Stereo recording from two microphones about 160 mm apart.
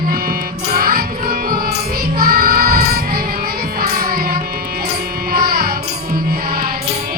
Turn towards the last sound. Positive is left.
turn(degrees=-70)  # may be behind; listen again after turning